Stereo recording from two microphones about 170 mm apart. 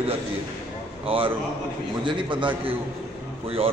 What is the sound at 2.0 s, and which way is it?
Speech, 30° right (ahead or behind).